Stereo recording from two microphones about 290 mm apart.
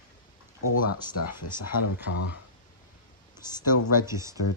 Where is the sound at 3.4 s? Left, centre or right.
Centre.